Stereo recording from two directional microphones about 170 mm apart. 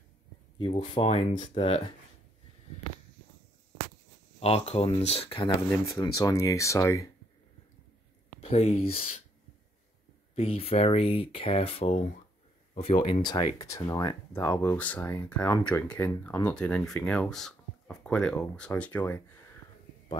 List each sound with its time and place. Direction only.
0.6 s speech: 30° left (ahead or behind)
4.4 s speech: 40° left (ahead or behind)
5.7 s speech: 20° left (ahead or behind)
8.4 s speech: 35° left (ahead or behind)
10.3 s speech: 35° left (ahead or behind); by 19.2 s 10° left (ahead or behind)